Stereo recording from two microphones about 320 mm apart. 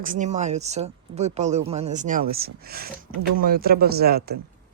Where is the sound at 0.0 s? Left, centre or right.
Right.